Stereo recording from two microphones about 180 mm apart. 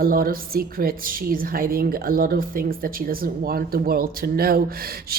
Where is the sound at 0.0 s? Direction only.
55° right (ahead or behind).